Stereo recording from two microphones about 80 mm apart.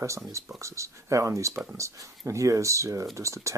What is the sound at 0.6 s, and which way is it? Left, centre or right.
Speech, right.